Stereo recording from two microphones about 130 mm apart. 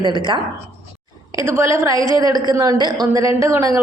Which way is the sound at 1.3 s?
25° right (ahead or behind).